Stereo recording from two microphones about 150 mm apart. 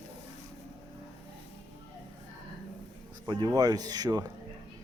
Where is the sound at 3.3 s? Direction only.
30° right (ahead or behind).